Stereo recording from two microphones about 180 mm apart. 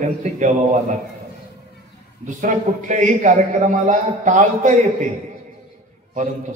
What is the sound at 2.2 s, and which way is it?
A man's voice, 45° right (ahead or behind).